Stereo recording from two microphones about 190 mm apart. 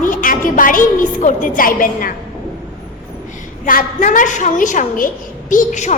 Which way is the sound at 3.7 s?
45° left (ahead or behind).